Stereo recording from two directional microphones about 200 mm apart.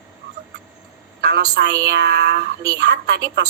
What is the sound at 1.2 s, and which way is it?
A woman's voice, 55° right (ahead or behind).